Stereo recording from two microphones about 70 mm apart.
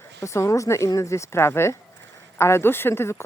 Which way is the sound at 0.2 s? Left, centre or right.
Left.